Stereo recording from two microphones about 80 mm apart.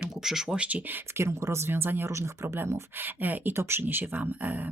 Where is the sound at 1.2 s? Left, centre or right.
Right.